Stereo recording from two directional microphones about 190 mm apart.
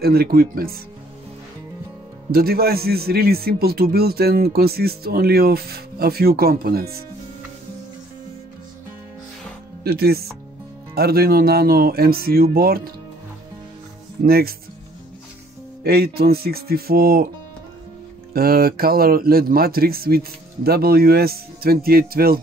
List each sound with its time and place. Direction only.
0.0 s a man's voice: 55° right (ahead or behind)
2.3 s a man's voice: 55° right (ahead or behind)
9.8 s a man's voice: 55° right (ahead or behind)
14.2 s a man's voice: 50° right (ahead or behind)
15.8 s speech: 55° right (ahead or behind)
18.3 s a man's voice: 50° right (ahead or behind)